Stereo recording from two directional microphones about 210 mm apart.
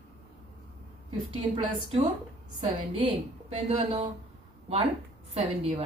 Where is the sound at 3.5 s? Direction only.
30° right (ahead or behind).